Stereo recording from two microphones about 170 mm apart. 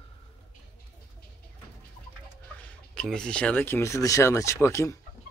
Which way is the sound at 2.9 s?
5° left (ahead or behind).